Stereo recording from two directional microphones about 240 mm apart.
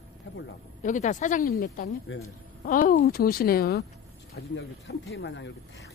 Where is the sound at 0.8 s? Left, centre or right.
Left.